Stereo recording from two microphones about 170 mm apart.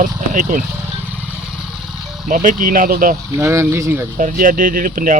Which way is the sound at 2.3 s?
50° right (ahead or behind).